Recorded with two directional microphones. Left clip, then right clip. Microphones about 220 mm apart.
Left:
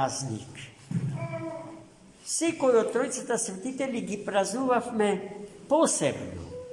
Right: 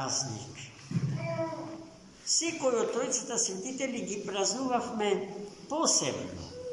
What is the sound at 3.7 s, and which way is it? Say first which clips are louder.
A man's voice: left 3 dB; 50° left (ahead or behind).